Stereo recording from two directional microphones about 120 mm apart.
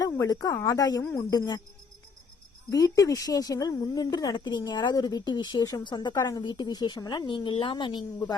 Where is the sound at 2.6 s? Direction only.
30° left (ahead or behind).